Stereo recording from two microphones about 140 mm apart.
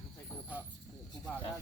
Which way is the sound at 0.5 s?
10° right (ahead or behind).